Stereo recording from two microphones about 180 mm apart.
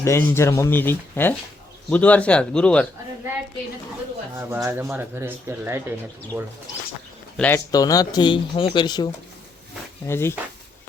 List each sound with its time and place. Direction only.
0.0 s speech: 15° left (ahead or behind)
4.4 s speech: 15° right (ahead or behind)
7.3 s speech: 10° left (ahead or behind)
7.7 s speech: 20° left (ahead or behind)
10.1 s speech: 15° left (ahead or behind)